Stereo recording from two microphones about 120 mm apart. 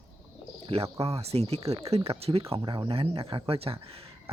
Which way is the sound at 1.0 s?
60° right (ahead or behind).